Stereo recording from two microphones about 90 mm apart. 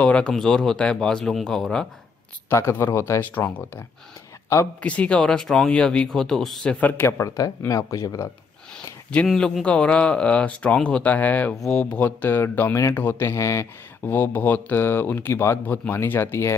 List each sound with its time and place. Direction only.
0.0 s speech: 10° left (ahead or behind)
2.5 s speech: 30° left (ahead or behind)
3.3 s speech: 20° left (ahead or behind)
4.8 s speech: 15° left (ahead or behind)
7.1 s speech: 35° left (ahead or behind)
9.1 s speech: 10° left (ahead or behind); by 13.7 s 35° left (ahead or behind)
14.0 s speech: 20° left (ahead or behind)